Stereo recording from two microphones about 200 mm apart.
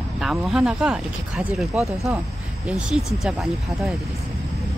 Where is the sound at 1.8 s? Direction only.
15° right (ahead or behind).